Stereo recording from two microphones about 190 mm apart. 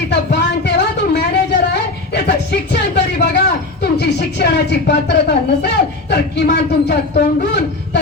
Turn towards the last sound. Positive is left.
turn(degrees=60)  # may be behind; listen again after turning